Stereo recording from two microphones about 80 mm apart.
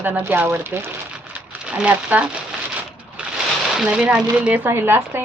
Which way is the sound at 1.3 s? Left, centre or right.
Centre.